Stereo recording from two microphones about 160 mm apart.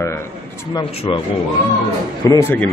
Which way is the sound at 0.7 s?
30° left (ahead or behind).